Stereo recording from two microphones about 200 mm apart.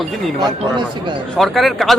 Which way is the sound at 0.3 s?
20° right (ahead or behind).